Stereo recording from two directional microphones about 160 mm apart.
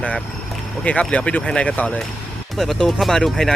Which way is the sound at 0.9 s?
10° left (ahead or behind).